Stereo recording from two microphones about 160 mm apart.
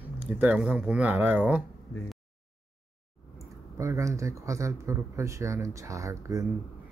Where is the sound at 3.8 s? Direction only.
20° right (ahead or behind).